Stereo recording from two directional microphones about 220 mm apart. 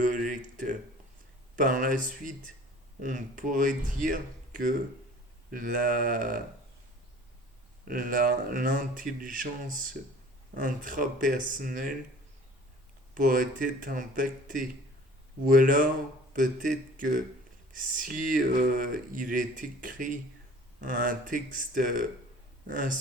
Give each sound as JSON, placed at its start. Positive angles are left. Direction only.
{"t": 0.0, "sound": "a sound", "side_deg": -35}
{"t": 1.6, "sound": "speech", "side_deg": -35}
{"t": 7.9, "sound": "speech", "side_deg": -40}
{"t": 13.1, "sound": "speech", "side_deg": -40}
{"t": 20.8, "sound": "speech", "side_deg": -35}